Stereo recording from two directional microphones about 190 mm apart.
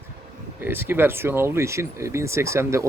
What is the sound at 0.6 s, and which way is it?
Speech, 10° right (ahead or behind).